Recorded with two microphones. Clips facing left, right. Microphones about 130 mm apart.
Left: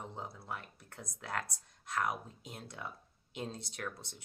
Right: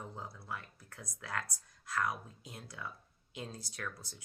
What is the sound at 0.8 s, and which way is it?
Speech, 25° left (ahead or behind).